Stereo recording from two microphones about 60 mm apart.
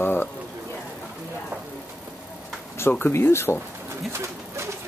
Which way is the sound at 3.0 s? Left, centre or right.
Left.